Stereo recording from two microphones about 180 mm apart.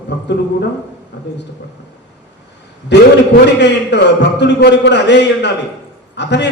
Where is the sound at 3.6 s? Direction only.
70° left (ahead or behind).